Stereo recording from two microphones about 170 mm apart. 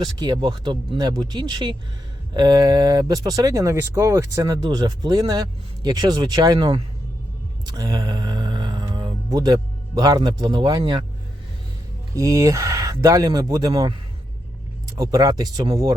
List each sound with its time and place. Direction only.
0.0 s speech: 25° right (ahead or behind)
7.8 s music: 25° right (ahead or behind)
12.1 s speech: 20° right (ahead or behind)
14.9 s speech: 20° right (ahead or behind)